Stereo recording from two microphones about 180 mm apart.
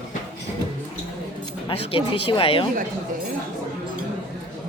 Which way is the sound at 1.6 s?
30° left (ahead or behind).